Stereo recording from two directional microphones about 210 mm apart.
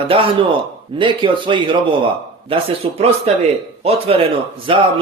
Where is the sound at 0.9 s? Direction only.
25° right (ahead or behind).